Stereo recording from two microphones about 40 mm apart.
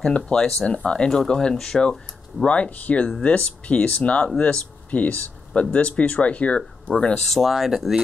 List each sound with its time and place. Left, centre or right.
0.0 s speech: left
2.4 s speech: left
7.2 s speech: centre